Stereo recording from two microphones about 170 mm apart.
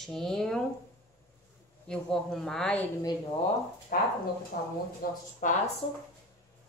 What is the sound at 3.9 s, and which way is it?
Speech, 55° left (ahead or behind).